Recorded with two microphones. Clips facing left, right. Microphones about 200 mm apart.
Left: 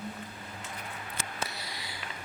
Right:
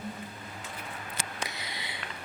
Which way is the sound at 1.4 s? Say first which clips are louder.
Even; 20° right (ahead or behind).